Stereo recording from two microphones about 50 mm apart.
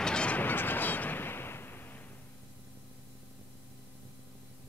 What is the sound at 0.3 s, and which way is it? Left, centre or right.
Fowl, left.